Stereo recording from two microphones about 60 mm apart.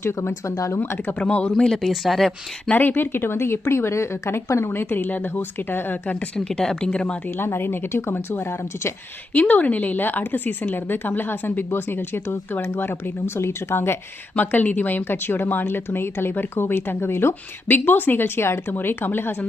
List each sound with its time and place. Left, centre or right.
0.0 s speech: left
0.8 s a woman's voice: left
1.2 s speech: centre
2.7 s a woman's voice: left
6.1 s speech: centre
7.3 s a woman's voice: left
9.3 s a woman's voice: left
14.3 s a woman's voice: left